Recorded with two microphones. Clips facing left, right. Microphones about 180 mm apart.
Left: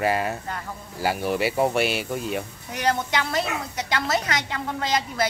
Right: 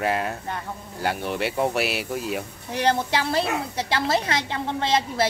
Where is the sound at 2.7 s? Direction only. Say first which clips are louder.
Right 2 dB; 30° right (ahead or behind).